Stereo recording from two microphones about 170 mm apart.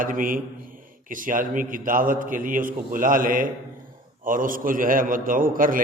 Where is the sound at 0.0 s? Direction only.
55° right (ahead or behind).